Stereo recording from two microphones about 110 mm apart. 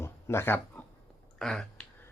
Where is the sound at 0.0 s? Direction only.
25° left (ahead or behind).